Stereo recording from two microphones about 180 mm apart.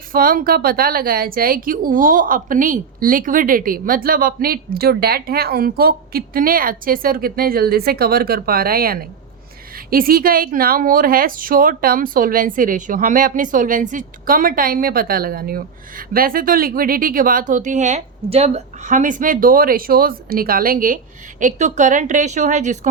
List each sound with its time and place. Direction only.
0.1 s a woman's voice: 55° right (ahead or behind)